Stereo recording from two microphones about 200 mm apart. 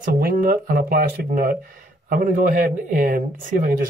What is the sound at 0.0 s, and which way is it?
Speech, 45° right (ahead or behind).